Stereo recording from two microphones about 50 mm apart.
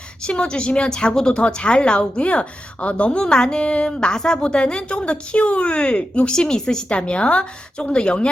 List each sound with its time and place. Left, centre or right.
0.3 s a woman's voice: centre